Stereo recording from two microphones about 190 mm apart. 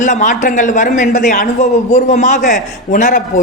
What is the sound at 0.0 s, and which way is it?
A man's voice, 40° left (ahead or behind).